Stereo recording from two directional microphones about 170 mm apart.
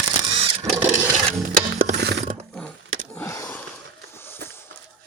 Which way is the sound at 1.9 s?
75° right (ahead or behind).